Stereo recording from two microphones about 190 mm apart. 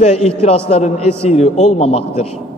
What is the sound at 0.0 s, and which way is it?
A man's voice, 35° left (ahead or behind).